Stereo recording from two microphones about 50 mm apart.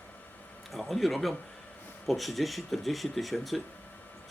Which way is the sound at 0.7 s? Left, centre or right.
Centre.